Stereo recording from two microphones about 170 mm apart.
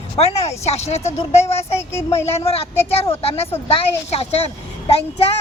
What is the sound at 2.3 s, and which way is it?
Speech, 35° left (ahead or behind).